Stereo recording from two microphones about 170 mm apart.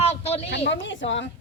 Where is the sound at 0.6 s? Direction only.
90° left.